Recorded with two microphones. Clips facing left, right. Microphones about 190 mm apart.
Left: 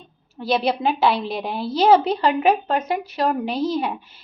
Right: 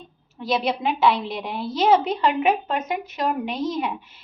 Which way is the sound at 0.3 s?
30° left (ahead or behind).